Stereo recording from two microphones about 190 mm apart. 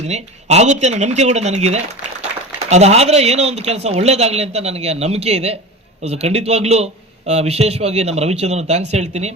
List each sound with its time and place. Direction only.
0.1 s speech: 35° right (ahead or behind)